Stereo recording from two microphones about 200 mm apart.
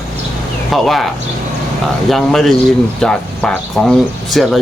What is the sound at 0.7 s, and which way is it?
Speech, centre (ahead or behind).